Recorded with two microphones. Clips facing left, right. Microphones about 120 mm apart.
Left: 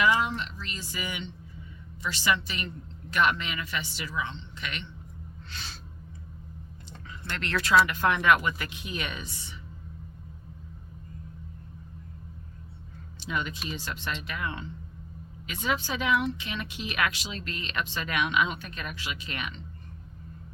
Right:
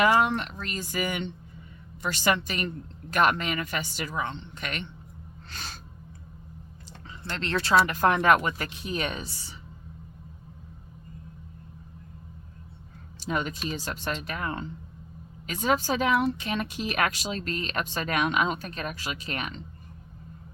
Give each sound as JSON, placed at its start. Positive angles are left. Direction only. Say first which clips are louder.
{"t": 0.0, "sound": "speech", "louder": "right 3 dB", "side_deg": -50}
{"t": 5.5, "sound": "snort", "louder": "right 3 dB", "side_deg": -45}
{"t": 7.3, "sound": "speech", "louder": "right 1 dB", "side_deg": -30}
{"t": 7.9, "sound": "speech", "louder": "right 2 dB", "side_deg": -40}
{"t": 13.1, "sound": "speech", "louder": "right 3 dB", "side_deg": -40}